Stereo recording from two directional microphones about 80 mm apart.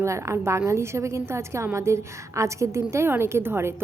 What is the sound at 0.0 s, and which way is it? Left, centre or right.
A woman's voice, right.